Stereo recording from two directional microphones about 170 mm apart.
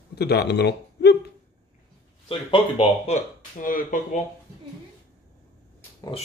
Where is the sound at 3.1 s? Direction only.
55° left (ahead or behind).